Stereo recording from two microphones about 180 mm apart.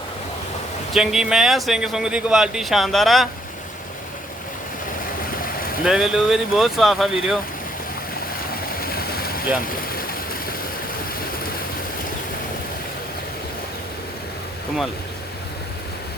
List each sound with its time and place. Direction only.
0.9 s speech: 5° right (ahead or behind)
5.8 s speech: 5° right (ahead or behind)
8.8 s a sound: 55° left (ahead or behind)